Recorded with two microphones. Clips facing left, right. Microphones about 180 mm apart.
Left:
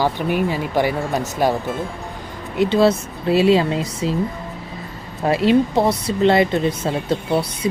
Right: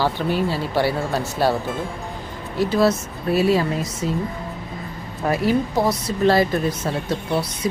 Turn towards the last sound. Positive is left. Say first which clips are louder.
# left 3 dB
turn(degrees=25)  # may be behind; listen again after turning